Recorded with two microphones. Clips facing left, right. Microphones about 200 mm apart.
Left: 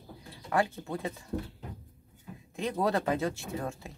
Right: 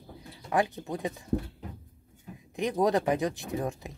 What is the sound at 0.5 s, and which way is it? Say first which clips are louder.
Speech: right 1 dB; 15° right (ahead or behind).